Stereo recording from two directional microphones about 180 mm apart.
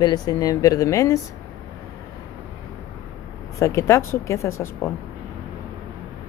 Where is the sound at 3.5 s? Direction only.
15° left (ahead or behind).